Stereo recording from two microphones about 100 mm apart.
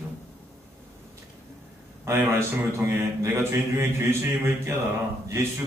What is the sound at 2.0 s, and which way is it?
A man's voice, 25° right (ahead or behind).